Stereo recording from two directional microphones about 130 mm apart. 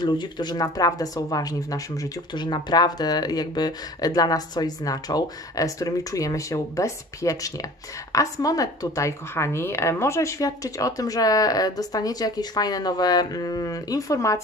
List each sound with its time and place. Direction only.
0.0 s speech: 35° left (ahead or behind)